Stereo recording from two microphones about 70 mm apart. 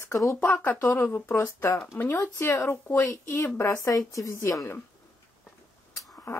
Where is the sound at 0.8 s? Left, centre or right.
Left.